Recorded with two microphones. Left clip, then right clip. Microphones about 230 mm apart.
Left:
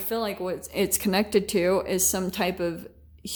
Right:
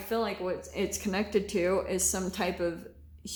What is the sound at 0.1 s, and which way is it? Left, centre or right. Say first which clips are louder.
A woman's voice: left 2 dB; left.